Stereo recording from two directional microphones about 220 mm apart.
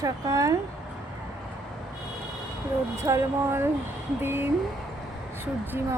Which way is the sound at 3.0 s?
15° right (ahead or behind).